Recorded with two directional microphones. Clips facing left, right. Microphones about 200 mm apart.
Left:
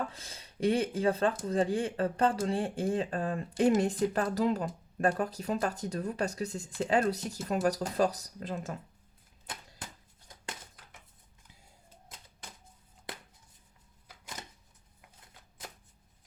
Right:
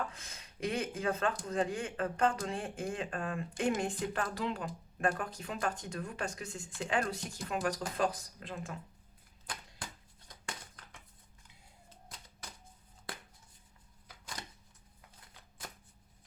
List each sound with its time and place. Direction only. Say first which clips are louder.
0.1 s speech: left 3 dB; 35° left (ahead or behind)